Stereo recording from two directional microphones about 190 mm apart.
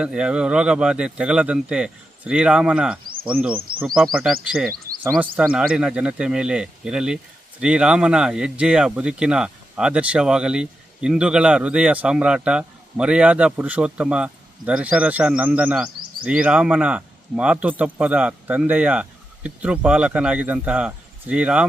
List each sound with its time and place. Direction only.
0.0 s speech: 5° right (ahead or behind)
4.7 s a sound: 50° right (ahead or behind)
5.1 s speech: 5° right (ahead or behind)